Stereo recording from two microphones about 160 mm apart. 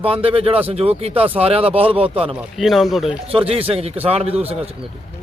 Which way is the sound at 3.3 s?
35° right (ahead or behind).